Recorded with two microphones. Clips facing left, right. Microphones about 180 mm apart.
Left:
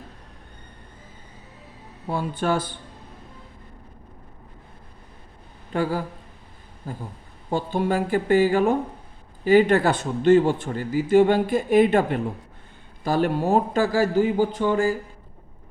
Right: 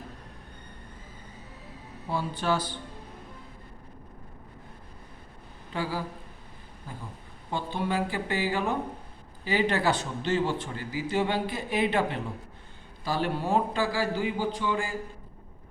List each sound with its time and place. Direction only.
2.0 s a man's voice: 50° left (ahead or behind)
5.7 s a man's voice: 50° left (ahead or behind)